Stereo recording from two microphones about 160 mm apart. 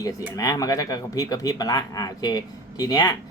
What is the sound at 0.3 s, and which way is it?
Speech, 20° left (ahead or behind).